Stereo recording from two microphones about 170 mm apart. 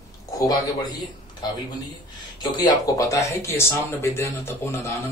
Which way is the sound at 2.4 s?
20° left (ahead or behind).